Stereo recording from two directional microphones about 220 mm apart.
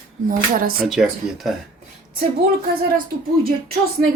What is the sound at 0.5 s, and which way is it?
Speech, 40° right (ahead or behind).